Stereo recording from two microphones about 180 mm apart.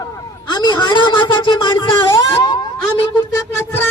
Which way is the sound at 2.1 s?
15° left (ahead or behind).